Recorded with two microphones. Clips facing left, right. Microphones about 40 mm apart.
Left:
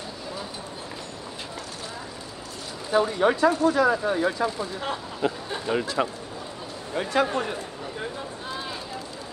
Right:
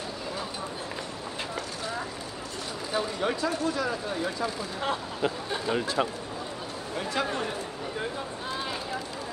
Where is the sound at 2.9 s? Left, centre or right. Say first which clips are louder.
Left 8 dB; left.